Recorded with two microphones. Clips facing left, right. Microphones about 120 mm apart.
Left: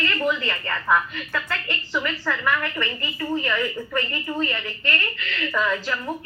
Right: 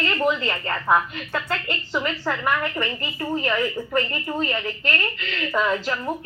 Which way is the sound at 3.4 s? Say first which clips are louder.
Right 2 dB; 35° right (ahead or behind).